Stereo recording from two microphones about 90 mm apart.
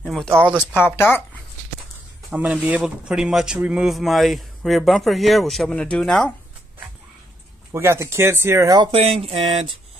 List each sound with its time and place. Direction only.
0.0 s a sound: centre (ahead or behind)
0.7 s speech: 25° left (ahead or behind)
2.3 s speech: 15° right (ahead or behind)
3.8 s a man's voice: centre (ahead or behind)
7.7 s speech: 30° right (ahead or behind)
8.6 s speech: 55° right (ahead or behind)
8.9 s speech: 90° right